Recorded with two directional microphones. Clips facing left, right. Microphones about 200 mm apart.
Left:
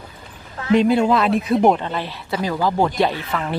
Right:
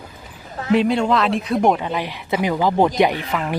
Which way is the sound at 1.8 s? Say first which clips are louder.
Right 2 dB; 10° right (ahead or behind).